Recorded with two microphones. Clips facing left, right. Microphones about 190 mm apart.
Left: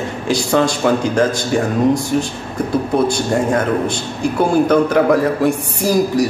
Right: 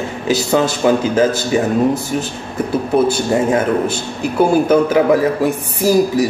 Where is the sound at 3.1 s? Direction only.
5° right (ahead or behind).